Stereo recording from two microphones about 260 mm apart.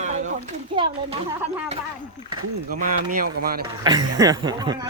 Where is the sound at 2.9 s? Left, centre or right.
Right.